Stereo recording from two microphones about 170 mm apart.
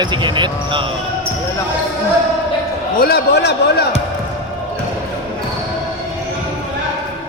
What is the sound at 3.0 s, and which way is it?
Speech, 65° left (ahead or behind).